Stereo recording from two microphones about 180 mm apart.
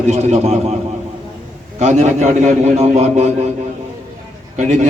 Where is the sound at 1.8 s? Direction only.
40° right (ahead or behind).